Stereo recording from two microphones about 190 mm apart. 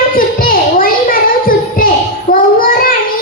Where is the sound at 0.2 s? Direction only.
50° left (ahead or behind).